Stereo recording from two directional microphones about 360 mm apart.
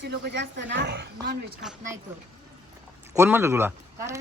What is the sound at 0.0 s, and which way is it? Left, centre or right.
Speech, right.